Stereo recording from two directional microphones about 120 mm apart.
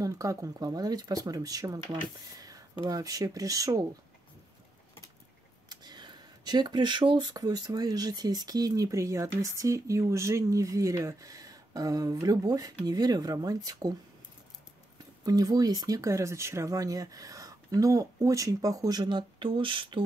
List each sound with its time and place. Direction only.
0.0 s speech: 30° right (ahead or behind)
5.7 s speech: 35° right (ahead or behind)
15.2 s speech: 30° right (ahead or behind)